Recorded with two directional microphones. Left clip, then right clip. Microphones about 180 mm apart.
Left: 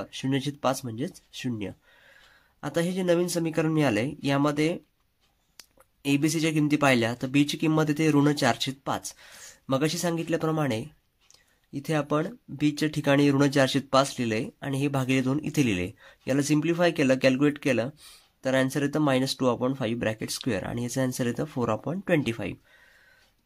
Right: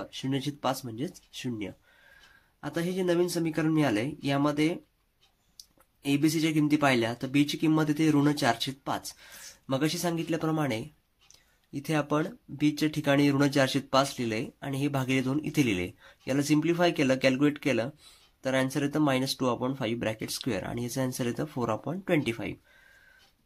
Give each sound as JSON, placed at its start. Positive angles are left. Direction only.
{"t": 0.0, "sound": "speech", "side_deg": 30}
{"t": 6.0, "sound": "speech", "side_deg": 30}